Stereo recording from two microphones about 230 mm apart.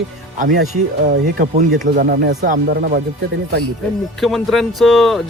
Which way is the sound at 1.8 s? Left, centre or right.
Right.